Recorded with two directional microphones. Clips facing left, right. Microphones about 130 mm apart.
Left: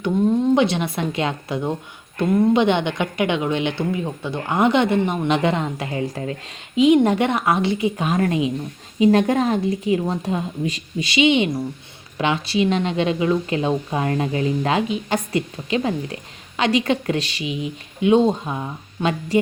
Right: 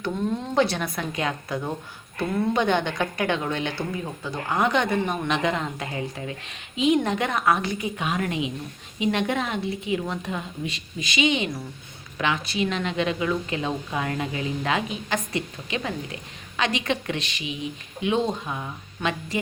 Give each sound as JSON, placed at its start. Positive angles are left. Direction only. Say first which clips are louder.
{"t": 0.0, "sound": "a woman's voice", "louder": "left 9 dB", "side_deg": 20}
{"t": 7.9, "sound": "a woman's voice", "louder": "left 6 dB", "side_deg": 40}